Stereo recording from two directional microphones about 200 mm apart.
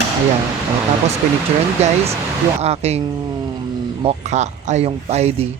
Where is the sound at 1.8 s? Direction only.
30° right (ahead or behind).